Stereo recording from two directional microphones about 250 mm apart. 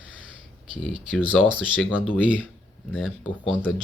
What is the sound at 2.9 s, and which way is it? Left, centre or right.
Speech, centre.